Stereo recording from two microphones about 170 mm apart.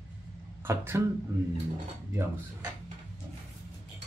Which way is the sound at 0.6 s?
15° right (ahead or behind).